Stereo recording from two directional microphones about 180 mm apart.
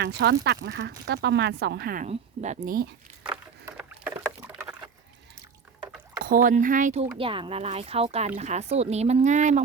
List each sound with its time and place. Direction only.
0.0 s speech: 70° right (ahead or behind)
2.0 s speech: 40° right (ahead or behind)
3.7 s a sound: 10° right (ahead or behind)
6.2 s speech: 50° right (ahead or behind)